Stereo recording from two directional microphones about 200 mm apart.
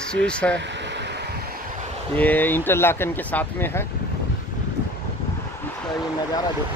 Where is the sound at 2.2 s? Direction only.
10° left (ahead or behind).